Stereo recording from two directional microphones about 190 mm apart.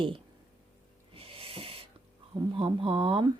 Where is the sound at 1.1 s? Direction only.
30° right (ahead or behind).